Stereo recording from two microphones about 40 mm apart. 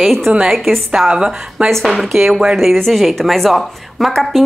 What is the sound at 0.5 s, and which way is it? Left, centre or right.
Speech, centre.